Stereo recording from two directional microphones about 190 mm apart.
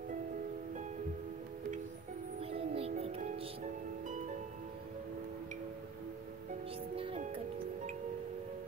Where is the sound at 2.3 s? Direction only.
30° right (ahead or behind).